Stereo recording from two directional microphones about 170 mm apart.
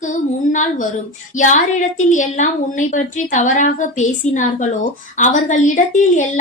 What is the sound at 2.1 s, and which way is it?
A woman's voice, 45° left (ahead or behind).